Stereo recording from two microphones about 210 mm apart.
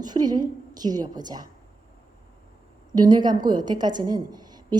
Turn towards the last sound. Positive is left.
turn(degrees=-20)  # may be behind; listen again after turning